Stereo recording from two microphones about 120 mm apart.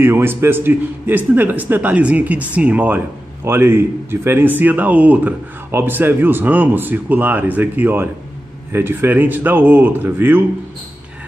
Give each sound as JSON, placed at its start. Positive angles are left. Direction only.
{"t": 0.0, "sound": "speech", "side_deg": -20}